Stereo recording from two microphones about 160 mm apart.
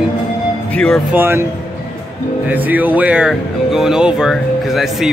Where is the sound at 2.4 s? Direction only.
10° right (ahead or behind).